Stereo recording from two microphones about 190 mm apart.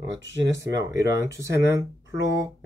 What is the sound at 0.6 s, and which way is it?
Speech, 15° right (ahead or behind).